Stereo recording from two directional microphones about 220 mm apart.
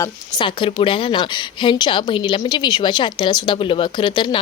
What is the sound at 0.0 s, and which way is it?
A woman's voice, 20° left (ahead or behind).